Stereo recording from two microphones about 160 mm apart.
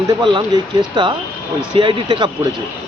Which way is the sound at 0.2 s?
30° right (ahead or behind).